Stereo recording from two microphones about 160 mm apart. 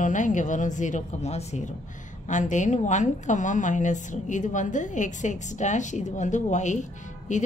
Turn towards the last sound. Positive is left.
turn(degrees=50)  # may be behind; listen again after turning